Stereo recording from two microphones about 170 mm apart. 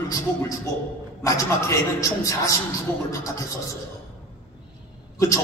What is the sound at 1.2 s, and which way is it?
A man's voice, 20° left (ahead or behind).